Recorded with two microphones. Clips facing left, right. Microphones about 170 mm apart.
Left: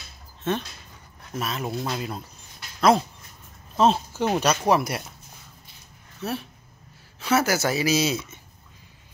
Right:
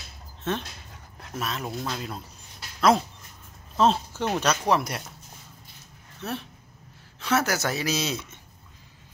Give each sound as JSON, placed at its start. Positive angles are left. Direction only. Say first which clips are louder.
{"t": 0.5, "sound": "speech", "louder": "left 3 dB", "side_deg": 0}
{"t": 3.7, "sound": "speech", "louder": "left 2 dB", "side_deg": 5}
{"t": 6.2, "sound": "speech", "louder": "left 3 dB", "side_deg": 0}